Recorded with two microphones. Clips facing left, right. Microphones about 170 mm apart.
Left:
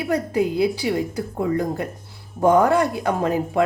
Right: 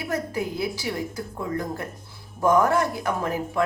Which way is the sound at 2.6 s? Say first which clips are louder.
Left 4 dB; 20° left (ahead or behind).